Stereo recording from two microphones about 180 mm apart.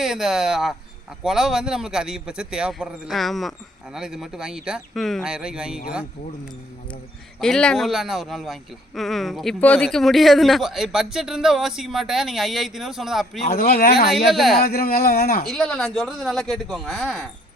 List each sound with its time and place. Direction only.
0.0 s speech: centre (ahead or behind)
7.3 s speech: 5° left (ahead or behind)
13.5 s speech: 55° left (ahead or behind)
14.1 s speech: centre (ahead or behind)
14.6 s speech: 55° left (ahead or behind)
15.4 s speech: 5° left (ahead or behind)